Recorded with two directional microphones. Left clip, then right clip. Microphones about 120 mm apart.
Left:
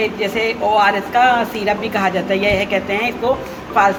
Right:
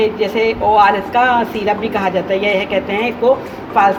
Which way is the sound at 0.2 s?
20° right (ahead or behind).